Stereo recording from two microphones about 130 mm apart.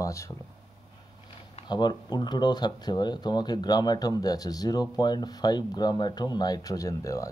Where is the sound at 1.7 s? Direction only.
35° left (ahead or behind).